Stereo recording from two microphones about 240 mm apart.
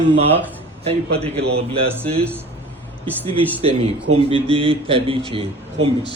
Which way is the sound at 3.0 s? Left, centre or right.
Centre.